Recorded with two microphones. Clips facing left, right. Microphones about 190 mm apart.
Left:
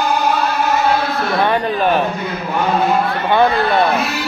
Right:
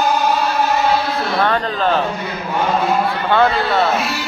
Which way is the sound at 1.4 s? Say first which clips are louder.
Left 2 dB; 15° left (ahead or behind).